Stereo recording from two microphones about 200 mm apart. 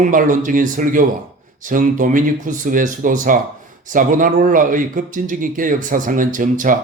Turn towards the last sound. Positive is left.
turn(degrees=-40)  # may be behind; listen again after turning